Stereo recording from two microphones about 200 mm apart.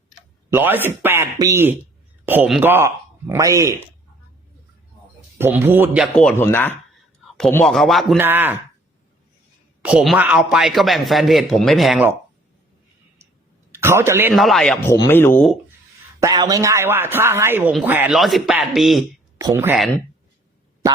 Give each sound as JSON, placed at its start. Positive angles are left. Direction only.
{"t": 0.5, "sound": "a man's voice", "side_deg": -10}
{"t": 5.4, "sound": "a man's voice", "side_deg": -10}
{"t": 8.2, "sound": "a man's voice", "side_deg": -10}
{"t": 9.8, "sound": "a man's voice", "side_deg": -5}
{"t": 13.7, "sound": "a man's voice", "side_deg": -15}
{"t": 14.3, "sound": "a man's voice", "side_deg": 0}
{"t": 14.8, "sound": "speech", "side_deg": 15}
{"t": 16.2, "sound": "a man's voice", "side_deg": -20}
{"t": 19.4, "sound": "a man's voice", "side_deg": -15}